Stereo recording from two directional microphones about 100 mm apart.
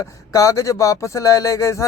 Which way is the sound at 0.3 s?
35° left (ahead or behind).